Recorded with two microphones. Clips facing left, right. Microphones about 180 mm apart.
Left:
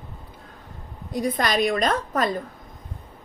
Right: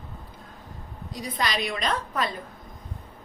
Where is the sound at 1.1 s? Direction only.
50° left (ahead or behind).